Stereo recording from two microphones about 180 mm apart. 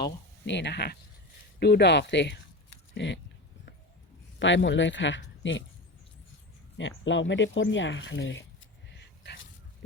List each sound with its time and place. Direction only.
0.0 s speech: 75° left (ahead or behind)
4.4 s speech: 90° left
6.7 s speech: 90° left
9.0 s dog: 70° left (ahead or behind)